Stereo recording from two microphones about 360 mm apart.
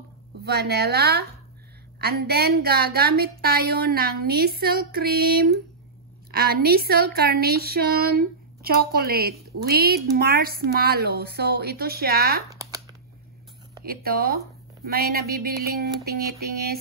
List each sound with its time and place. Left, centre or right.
0.4 s a woman's voice: right
13.8 s a woman's voice: right